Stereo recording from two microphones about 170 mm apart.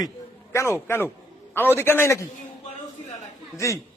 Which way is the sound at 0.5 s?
15° left (ahead or behind).